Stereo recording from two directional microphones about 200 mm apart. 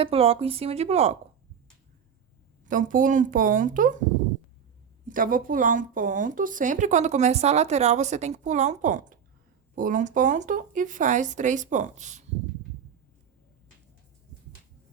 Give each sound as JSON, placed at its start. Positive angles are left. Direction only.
{"t": 0.0, "sound": "speech", "side_deg": -30}
{"t": 2.6, "sound": "speech", "side_deg": -40}
{"t": 5.0, "sound": "speech", "side_deg": -40}